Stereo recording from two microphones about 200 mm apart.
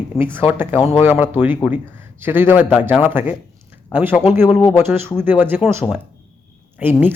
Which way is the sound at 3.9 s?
10° right (ahead or behind).